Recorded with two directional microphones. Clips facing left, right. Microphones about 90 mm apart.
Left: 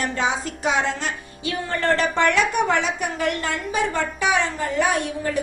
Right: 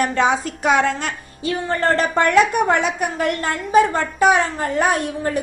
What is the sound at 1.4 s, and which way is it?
A woman's voice, 35° right (ahead or behind).